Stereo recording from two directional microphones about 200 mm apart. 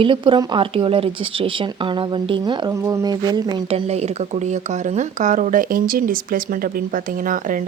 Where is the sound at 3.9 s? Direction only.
35° right (ahead or behind).